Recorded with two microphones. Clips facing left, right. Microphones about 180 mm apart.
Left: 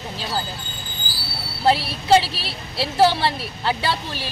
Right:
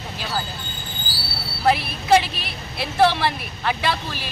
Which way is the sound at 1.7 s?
30° left (ahead or behind).